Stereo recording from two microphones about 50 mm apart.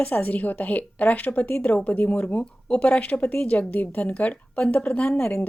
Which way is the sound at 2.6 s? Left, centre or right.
Left.